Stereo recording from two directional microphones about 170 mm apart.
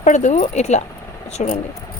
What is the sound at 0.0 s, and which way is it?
Speech, 45° left (ahead or behind).